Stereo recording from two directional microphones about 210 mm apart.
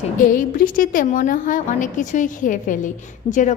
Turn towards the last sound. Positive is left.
turn(degrees=35)  # may be behind; listen again after turning